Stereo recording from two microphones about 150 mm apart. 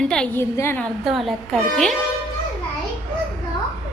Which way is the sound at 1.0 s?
Centre (ahead or behind).